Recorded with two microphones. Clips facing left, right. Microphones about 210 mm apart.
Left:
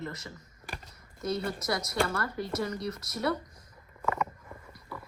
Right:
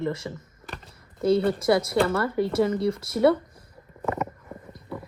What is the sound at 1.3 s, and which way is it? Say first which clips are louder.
Speech: right 11 dB; 30° right (ahead or behind).